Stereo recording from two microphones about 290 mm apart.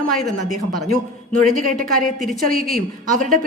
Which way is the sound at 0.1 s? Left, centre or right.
Centre.